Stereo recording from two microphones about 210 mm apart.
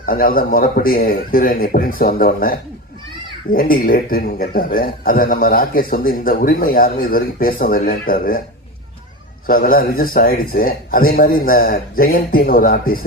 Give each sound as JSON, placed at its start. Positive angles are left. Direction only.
{"t": 0.0, "sound": "a man's voice", "side_deg": 45}
{"t": 9.5, "sound": "a man's voice", "side_deg": 40}